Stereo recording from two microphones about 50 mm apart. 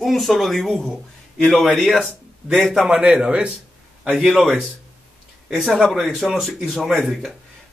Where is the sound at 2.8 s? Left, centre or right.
Centre.